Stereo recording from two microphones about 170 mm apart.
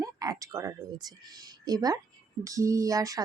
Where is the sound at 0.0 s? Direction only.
20° right (ahead or behind).